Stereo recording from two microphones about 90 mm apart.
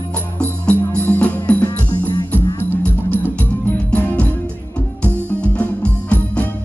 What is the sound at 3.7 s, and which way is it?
Music, 15° left (ahead or behind).